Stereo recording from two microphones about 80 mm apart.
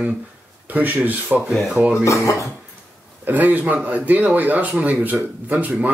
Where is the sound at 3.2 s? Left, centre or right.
Right.